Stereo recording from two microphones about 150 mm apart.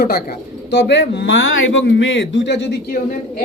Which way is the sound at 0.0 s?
90° left.